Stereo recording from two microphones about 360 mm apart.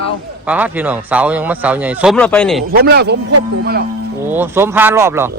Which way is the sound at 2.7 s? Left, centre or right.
Right.